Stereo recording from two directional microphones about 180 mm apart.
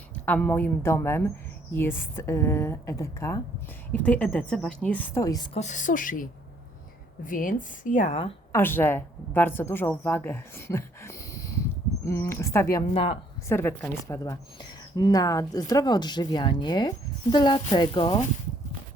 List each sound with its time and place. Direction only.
0.1 s a woman's voice: 5° left (ahead or behind)
5.5 s speech: 40° left (ahead or behind)
7.3 s speech: 50° left (ahead or behind)
8.5 s a woman's voice: 10° left (ahead or behind)
12.9 s speech: 35° left (ahead or behind)
13.5 s a woman's voice: 10° left (ahead or behind); by 18.2 s 25° left (ahead or behind)